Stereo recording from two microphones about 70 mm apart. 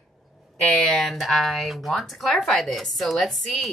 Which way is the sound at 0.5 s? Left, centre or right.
Centre.